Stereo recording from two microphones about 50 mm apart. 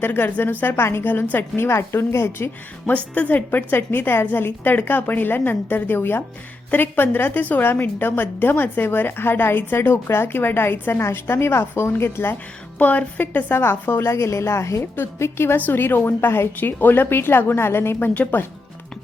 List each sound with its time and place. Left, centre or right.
0.0 s a woman's voice: left
0.6 s a woman's voice: left
2.8 s a woman's voice: left
12.8 s a woman's voice: left
14.2 s a woman's voice: left
15.2 s a woman's voice: left
15.5 s a woman's voice: left